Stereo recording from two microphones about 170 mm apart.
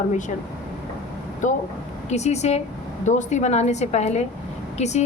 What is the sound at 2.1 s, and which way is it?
A woman's voice, 40° left (ahead or behind).